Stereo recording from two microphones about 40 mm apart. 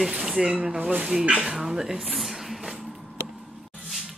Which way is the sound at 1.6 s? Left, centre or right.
Centre.